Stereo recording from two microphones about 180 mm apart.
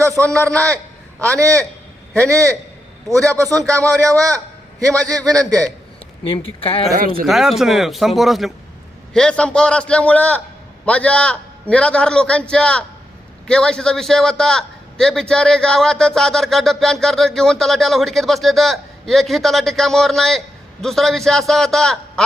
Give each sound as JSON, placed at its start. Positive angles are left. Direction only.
{"t": 0.0, "sound": "a sound", "side_deg": -15}
{"t": 1.2, "sound": "speech", "side_deg": -15}
{"t": 3.4, "sound": "a man's voice", "side_deg": 0}
{"t": 3.7, "sound": "speech", "side_deg": -15}
{"t": 6.6, "sound": "speech", "side_deg": 30}
{"t": 6.9, "sound": "speech", "side_deg": -55}
{"t": 7.3, "sound": "a man's voice", "side_deg": 0}